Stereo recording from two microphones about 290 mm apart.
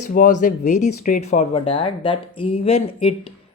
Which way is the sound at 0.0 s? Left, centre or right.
Left.